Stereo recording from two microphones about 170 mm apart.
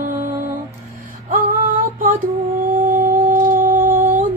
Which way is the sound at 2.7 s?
55° right (ahead or behind).